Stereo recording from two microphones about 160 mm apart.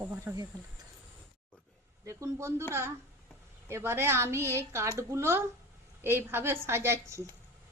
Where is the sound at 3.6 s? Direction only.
15° right (ahead or behind).